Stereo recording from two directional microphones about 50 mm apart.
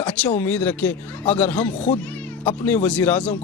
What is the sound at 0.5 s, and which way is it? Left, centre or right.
A man's voice, left.